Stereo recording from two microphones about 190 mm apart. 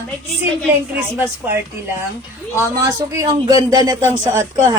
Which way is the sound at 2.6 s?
15° right (ahead or behind).